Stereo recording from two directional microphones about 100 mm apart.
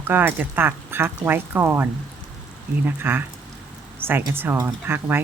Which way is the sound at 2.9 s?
20° right (ahead or behind).